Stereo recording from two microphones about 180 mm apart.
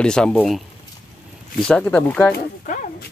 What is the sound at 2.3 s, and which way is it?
Speech, 50° left (ahead or behind).